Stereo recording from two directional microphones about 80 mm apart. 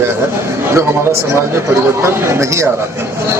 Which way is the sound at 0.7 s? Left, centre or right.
Right.